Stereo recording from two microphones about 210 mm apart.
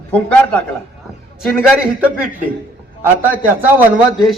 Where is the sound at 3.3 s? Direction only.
10° right (ahead or behind).